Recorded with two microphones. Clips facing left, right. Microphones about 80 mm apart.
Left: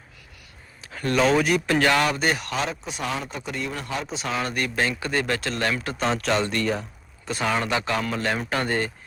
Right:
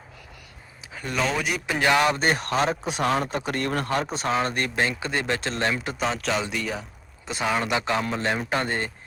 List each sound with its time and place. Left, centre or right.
0.9 s speech: centre
1.9 s speech: centre
2.1 s speech: right
2.8 s a man's voice: right
4.3 s speech: right
4.8 s speech: right
6.0 s speech: centre
7.7 s speech: centre